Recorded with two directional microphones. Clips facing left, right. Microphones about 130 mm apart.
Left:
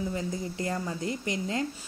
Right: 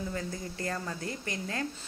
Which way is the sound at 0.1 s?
15° left (ahead or behind).